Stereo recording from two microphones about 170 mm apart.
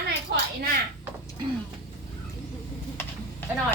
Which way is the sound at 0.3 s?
70° right (ahead or behind).